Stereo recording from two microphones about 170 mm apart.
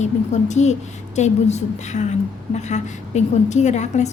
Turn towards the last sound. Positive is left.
turn(degrees=40)  # may be behind; listen again after turning